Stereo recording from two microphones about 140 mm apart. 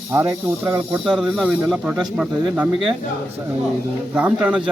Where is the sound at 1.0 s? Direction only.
Centre (ahead or behind).